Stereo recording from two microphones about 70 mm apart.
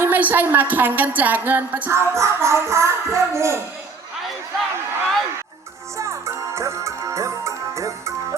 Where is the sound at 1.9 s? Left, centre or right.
Right.